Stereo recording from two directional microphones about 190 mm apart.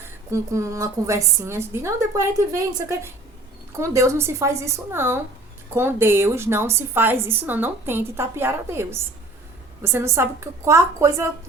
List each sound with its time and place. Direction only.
0.3 s a woman's voice: 15° right (ahead or behind)